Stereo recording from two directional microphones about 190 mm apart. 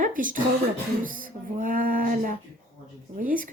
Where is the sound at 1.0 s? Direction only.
45° right (ahead or behind).